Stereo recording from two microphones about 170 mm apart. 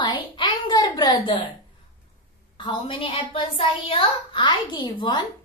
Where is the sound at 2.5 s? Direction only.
30° left (ahead or behind).